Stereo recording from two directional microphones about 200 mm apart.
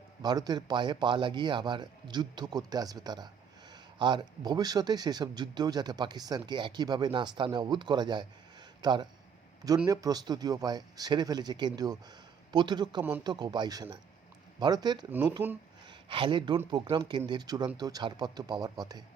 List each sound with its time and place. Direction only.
0.2 s speech: 20° right (ahead or behind)
15.4 s speech: 10° right (ahead or behind)
15.9 s speech: 25° right (ahead or behind)